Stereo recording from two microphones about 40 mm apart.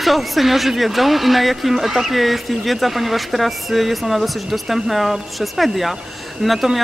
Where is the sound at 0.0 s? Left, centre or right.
Centre.